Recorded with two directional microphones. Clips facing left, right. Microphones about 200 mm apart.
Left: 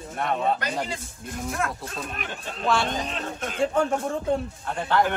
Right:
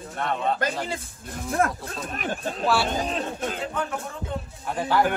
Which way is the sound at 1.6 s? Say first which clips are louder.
Right 7 dB; 35° right (ahead or behind).